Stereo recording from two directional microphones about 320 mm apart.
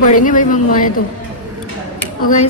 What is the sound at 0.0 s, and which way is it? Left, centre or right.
Speech, left.